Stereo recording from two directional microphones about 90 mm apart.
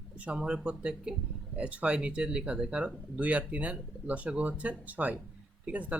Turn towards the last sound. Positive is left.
turn(degrees=-15)  # may be behind; listen again after turning